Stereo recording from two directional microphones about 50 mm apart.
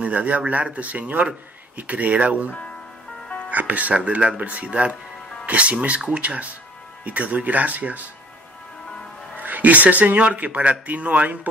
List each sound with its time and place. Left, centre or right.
0.0 s speech: right
9.4 s speech: right